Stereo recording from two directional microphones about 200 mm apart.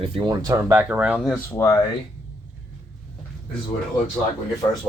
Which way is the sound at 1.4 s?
10° left (ahead or behind).